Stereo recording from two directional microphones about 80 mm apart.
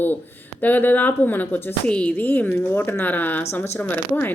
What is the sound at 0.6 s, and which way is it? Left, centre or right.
Speech, left.